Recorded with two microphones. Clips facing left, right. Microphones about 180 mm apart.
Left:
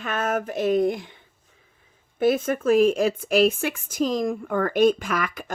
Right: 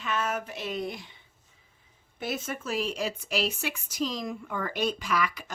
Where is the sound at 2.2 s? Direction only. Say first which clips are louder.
Left 13 dB; 50° left (ahead or behind).